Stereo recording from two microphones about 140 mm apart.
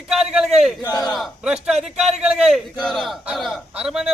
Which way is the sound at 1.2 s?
5° right (ahead or behind).